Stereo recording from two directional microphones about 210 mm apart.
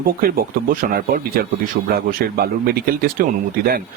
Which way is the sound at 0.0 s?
45° right (ahead or behind).